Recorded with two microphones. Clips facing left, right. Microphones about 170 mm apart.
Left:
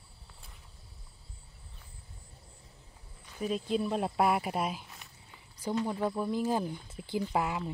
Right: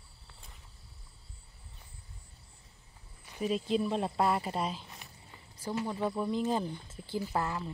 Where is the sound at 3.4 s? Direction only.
Centre (ahead or behind).